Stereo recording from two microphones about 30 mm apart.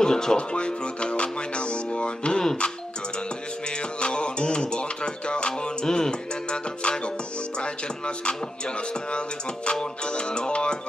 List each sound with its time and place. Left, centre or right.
0.0 s speech: left
0.4 s music: left
4.0 s music: left
9.7 s music: left